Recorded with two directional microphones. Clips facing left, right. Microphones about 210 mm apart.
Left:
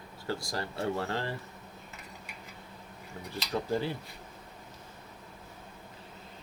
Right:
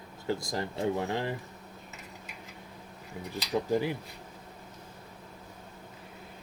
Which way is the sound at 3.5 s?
15° right (ahead or behind).